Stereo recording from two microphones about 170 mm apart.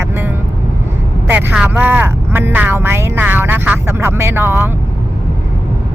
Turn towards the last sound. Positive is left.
turn(degrees=-15)  # may be behind; listen again after turning